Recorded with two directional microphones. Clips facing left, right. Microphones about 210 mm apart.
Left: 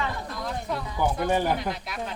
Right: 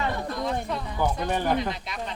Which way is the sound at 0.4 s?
5° left (ahead or behind).